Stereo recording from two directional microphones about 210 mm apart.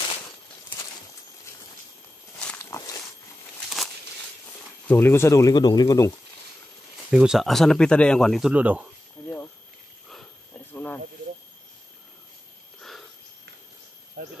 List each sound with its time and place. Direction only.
2.3 s walk: 10° left (ahead or behind)
4.8 s speech: 10° left (ahead or behind)
7.1 s speech: 5° right (ahead or behind)
10.7 s snake: 10° left (ahead or behind)
14.2 s cricket: 50° right (ahead or behind)